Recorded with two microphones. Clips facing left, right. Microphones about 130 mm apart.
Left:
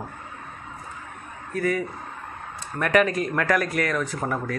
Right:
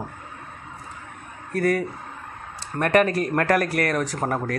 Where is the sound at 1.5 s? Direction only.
60° right (ahead or behind).